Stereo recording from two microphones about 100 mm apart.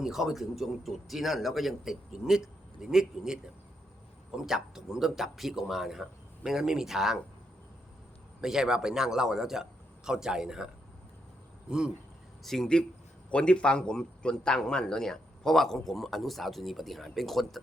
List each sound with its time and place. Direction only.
0.0 s speech: 5° right (ahead or behind)
4.4 s speech: 5° right (ahead or behind)
8.4 s speech: 5° right (ahead or behind)
11.7 s speech: 5° right (ahead or behind)
12.4 s a man's voice: 5° left (ahead or behind)